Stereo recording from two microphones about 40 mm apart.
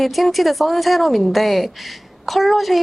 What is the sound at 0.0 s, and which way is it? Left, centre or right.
A woman's voice, centre.